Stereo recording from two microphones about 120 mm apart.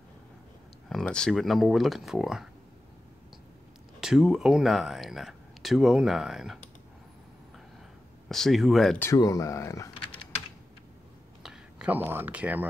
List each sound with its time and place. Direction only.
0.8 s speech: 5° left (ahead or behind)
4.0 s speech: 5° right (ahead or behind)
8.3 s speech: centre (ahead or behind)
8.9 s speech: 20° left (ahead or behind)
11.4 s speech: 10° right (ahead or behind)